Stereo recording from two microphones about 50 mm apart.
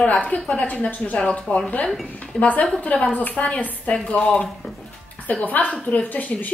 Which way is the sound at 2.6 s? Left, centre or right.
Left.